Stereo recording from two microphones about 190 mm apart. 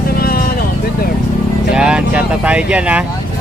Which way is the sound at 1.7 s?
5° right (ahead or behind).